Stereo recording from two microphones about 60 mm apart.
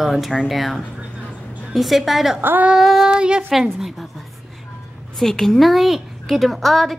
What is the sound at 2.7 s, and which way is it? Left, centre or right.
Speech, centre.